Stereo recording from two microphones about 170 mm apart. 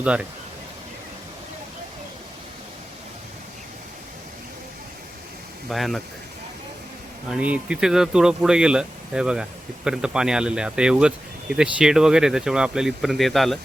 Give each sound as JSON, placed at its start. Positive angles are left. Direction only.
{"t": 0.0, "sound": "speech", "side_deg": -5}
{"t": 5.6, "sound": "speech", "side_deg": 0}
{"t": 7.3, "sound": "speech", "side_deg": -5}